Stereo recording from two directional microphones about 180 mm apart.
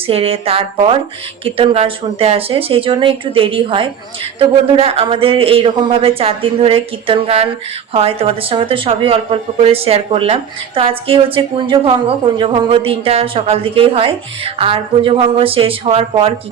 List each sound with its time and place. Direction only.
0.1 s speech: 35° right (ahead or behind)